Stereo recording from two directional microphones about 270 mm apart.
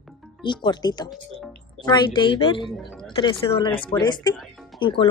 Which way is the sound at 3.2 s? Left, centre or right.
Centre.